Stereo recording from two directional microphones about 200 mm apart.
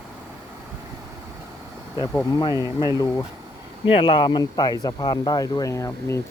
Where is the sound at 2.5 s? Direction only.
20° right (ahead or behind).